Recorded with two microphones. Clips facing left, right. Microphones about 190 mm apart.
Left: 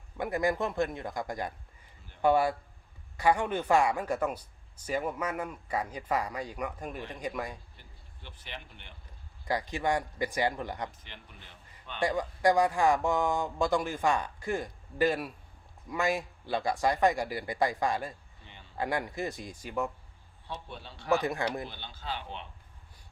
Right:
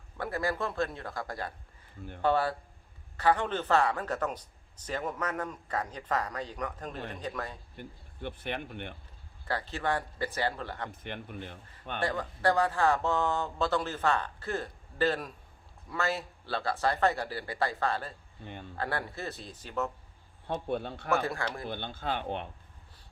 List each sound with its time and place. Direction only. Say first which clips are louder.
0.2 s speech: left 3 dB; 15° left (ahead or behind)
7.8 s speech: right 13 dB; 55° right (ahead or behind)
9.4 s speech: left 2 dB; 15° left (ahead or behind)
11.0 s speech: right 12 dB; 55° right (ahead or behind)
11.9 s speech: left 3 dB; 15° left (ahead or behind)
18.4 s speech: right 12 dB; 50° right (ahead or behind)
18.8 s speech: left 3 dB; 15° left (ahead or behind)
20.5 s speech: right 10 dB; 55° right (ahead or behind)
21.1 s speech: left 2 dB; 20° left (ahead or behind)
21.7 s speech: right 6 dB; 55° right (ahead or behind)